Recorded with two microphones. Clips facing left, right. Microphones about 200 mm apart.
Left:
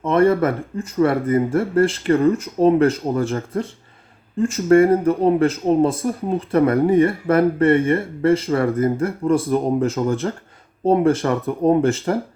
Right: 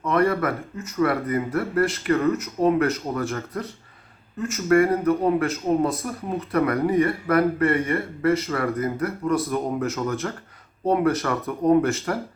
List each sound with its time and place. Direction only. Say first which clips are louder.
0.0 s speech: left 5 dB; 25° left (ahead or behind)